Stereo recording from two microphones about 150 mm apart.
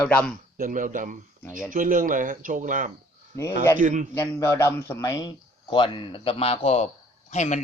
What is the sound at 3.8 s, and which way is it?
Speech, 60° right (ahead or behind).